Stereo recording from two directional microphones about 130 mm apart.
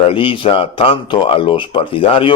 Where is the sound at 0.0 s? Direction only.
45° left (ahead or behind).